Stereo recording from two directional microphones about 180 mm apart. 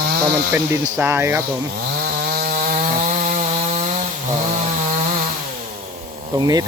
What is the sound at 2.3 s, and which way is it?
Chainsaw, 55° right (ahead or behind).